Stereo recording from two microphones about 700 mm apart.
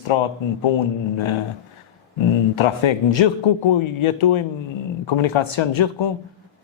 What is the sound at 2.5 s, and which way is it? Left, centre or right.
A man's voice, left.